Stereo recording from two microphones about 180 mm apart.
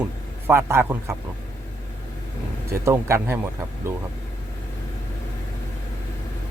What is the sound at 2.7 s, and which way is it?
Speech, 15° right (ahead or behind).